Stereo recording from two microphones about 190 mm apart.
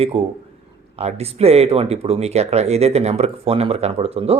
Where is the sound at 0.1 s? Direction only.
30° right (ahead or behind).